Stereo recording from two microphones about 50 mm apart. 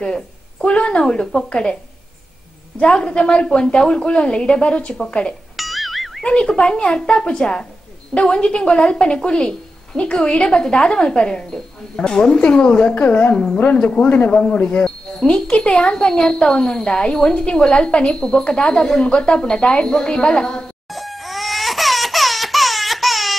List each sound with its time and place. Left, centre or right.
0.0 s speech: centre
2.8 s a woman's voice: centre
5.6 s music: centre
6.2 s a woman's voice: centre
12.9 s a woman's voice: left
14.0 s speech: left
14.3 s a woman's voice: left
20.9 s crying: centre